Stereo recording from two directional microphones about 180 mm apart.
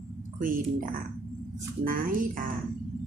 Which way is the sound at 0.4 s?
50° right (ahead or behind).